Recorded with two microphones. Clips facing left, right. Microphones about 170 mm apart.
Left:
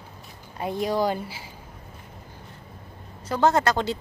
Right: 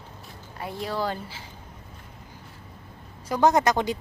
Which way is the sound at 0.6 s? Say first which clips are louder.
Left 5 dB; 20° left (ahead or behind).